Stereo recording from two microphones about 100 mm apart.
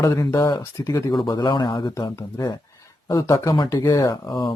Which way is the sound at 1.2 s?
40° left (ahead or behind).